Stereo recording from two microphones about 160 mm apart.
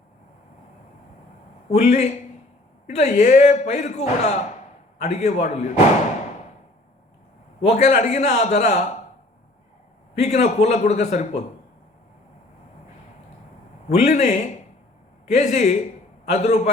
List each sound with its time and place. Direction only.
1.7 s speech: 45° left (ahead or behind)
7.6 s speech: 45° left (ahead or behind)
10.2 s speech: 45° left (ahead or behind)
14.0 s a man's voice: 45° left (ahead or behind)